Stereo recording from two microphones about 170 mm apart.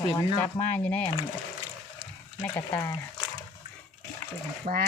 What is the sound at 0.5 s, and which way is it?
Speech, 10° left (ahead or behind).